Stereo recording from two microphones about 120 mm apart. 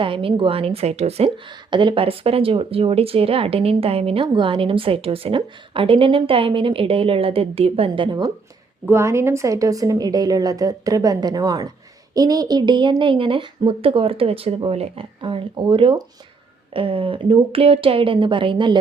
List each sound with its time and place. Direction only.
0.0 s speech: 45° right (ahead or behind)
1.5 s speech: 40° right (ahead or behind)
8.9 s a woman's voice: 20° right (ahead or behind); by 18.8 s 40° right (ahead or behind)